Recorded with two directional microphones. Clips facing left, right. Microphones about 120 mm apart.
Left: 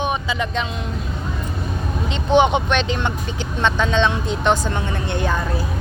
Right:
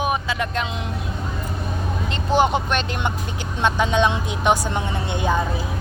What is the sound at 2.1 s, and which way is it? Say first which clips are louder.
Speech: left 3 dB; 5° right (ahead or behind).